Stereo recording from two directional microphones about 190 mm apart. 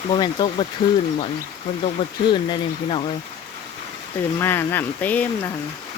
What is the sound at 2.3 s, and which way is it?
Speech, 25° left (ahead or behind).